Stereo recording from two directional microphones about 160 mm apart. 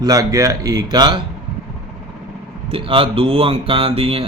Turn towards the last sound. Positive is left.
turn(degrees=-35)  # may be behind; listen again after turning